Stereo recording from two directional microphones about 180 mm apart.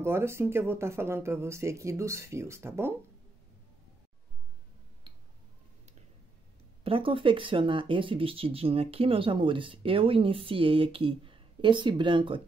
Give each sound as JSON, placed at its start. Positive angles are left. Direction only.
{"t": 0.0, "sound": "speech", "side_deg": -15}
{"t": 6.8, "sound": "speech", "side_deg": -30}